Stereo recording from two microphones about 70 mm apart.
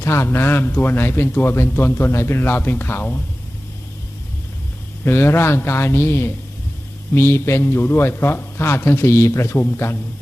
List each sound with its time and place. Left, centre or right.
0.0 s a man's voice: left
5.0 s a man's voice: left